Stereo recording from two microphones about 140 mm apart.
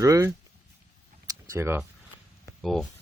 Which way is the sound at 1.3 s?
20° right (ahead or behind).